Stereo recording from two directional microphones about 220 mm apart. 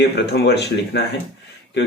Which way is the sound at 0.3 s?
50° left (ahead or behind).